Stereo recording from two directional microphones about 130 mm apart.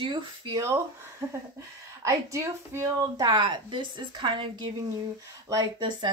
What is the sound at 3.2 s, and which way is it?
Speech, 35° right (ahead or behind).